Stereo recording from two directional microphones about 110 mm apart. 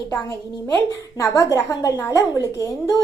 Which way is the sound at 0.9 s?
25° left (ahead or behind).